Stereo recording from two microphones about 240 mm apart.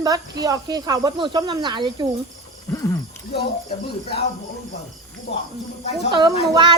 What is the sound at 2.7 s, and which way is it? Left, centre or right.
Speech, centre.